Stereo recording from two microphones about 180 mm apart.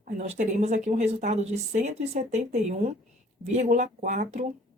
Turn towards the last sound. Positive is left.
turn(degrees=-40)  # may be behind; listen again after turning